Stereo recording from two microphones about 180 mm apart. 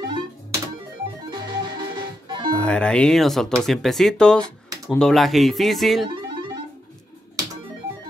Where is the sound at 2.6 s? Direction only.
5° left (ahead or behind).